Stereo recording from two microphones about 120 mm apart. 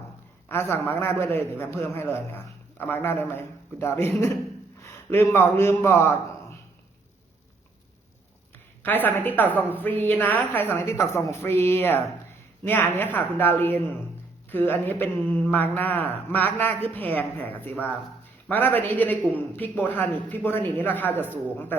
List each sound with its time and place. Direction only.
0.4 s a man's voice: 20° left (ahead or behind)
9.0 s speech: 15° left (ahead or behind)